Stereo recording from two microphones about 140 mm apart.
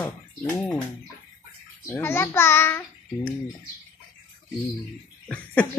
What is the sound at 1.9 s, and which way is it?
A child's voice, 15° left (ahead or behind).